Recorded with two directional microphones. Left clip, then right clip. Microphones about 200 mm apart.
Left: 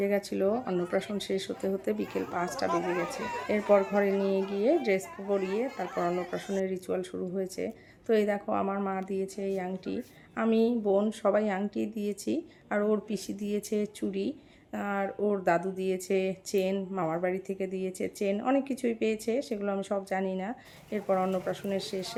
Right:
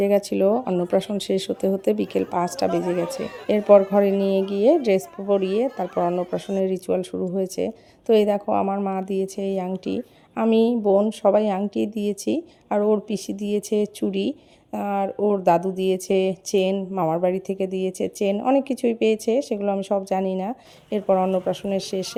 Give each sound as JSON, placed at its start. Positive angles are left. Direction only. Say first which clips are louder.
{"t": 0.0, "sound": "speech", "louder": "right 9 dB", "side_deg": -35}